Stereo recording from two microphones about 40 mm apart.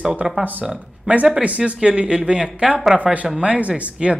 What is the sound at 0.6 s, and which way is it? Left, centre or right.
Speech, centre.